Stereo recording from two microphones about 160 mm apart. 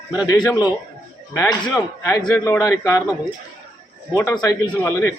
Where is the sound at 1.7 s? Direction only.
20° left (ahead or behind).